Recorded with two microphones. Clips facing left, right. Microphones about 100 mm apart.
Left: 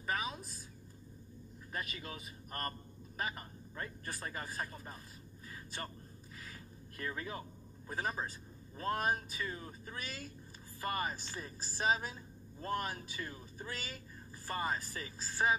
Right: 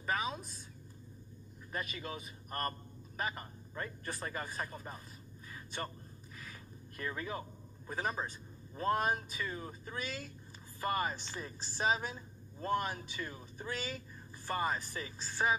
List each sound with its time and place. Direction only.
0.1 s a sound: 25° right (ahead or behind)
1.8 s speech: 25° right (ahead or behind)
7.1 s a man's voice: 25° right (ahead or behind)